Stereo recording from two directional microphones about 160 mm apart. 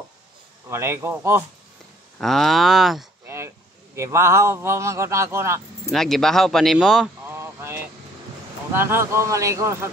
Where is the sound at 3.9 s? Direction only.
15° right (ahead or behind).